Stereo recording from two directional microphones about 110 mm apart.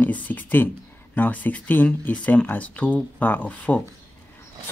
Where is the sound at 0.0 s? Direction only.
15° left (ahead or behind).